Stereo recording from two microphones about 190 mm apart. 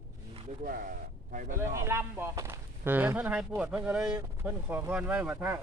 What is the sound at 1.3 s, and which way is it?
Speech, 45° right (ahead or behind).